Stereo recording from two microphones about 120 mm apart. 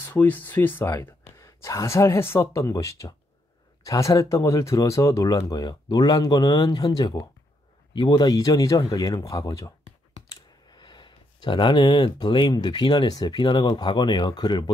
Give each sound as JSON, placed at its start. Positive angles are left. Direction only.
{"t": 0.0, "sound": "speech", "side_deg": 15}